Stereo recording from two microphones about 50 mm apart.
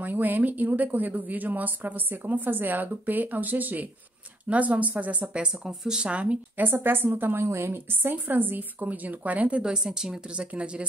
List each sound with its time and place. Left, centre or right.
0.0 s speech: right
5.2 s speech: centre
6.5 s a woman's voice: right
7.4 s a woman's voice: right
8.0 s speech: right